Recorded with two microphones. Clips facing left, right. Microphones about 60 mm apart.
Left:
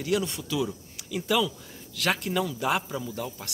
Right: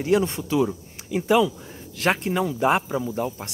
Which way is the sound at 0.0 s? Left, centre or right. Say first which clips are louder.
Right 6 dB; right.